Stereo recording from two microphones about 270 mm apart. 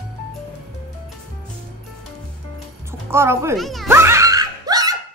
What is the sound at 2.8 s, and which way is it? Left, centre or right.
Music, centre.